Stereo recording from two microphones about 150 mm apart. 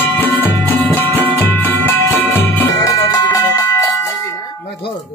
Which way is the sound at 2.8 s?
25° left (ahead or behind).